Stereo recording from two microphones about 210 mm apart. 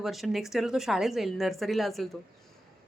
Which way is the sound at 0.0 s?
Centre (ahead or behind).